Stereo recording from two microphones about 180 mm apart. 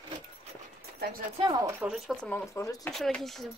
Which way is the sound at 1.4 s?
20° right (ahead or behind).